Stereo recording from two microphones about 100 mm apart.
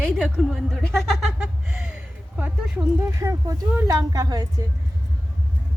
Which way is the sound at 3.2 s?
35° right (ahead or behind).